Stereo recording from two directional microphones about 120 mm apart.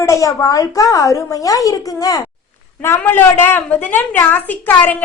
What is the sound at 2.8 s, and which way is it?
A woman's voice, 20° left (ahead or behind).